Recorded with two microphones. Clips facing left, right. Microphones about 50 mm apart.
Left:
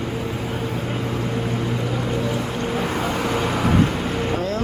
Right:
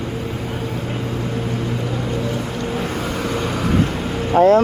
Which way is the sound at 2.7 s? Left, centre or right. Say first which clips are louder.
Left 2 dB; centre.